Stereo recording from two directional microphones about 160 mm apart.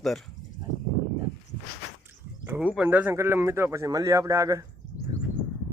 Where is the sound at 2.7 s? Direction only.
10° right (ahead or behind).